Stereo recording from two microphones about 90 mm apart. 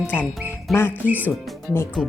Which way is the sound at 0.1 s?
25° left (ahead or behind).